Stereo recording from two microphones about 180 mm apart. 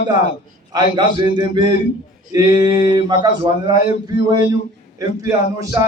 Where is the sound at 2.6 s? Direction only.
20° right (ahead or behind).